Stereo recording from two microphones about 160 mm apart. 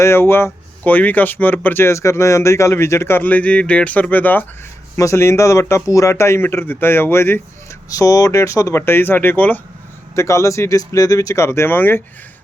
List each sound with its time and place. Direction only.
0.0 s speech: 15° left (ahead or behind)